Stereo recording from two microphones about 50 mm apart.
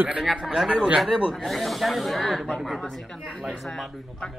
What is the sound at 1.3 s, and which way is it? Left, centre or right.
Speech, centre.